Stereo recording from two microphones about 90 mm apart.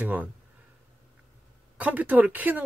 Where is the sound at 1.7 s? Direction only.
15° right (ahead or behind).